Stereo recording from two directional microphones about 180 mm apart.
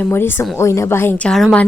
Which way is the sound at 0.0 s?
10° left (ahead or behind).